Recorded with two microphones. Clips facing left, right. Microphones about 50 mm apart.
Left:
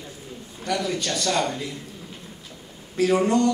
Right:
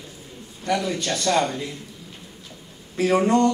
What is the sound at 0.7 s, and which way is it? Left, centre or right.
Speech, right.